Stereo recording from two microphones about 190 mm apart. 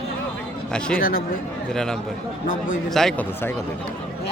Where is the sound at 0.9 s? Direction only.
50° left (ahead or behind).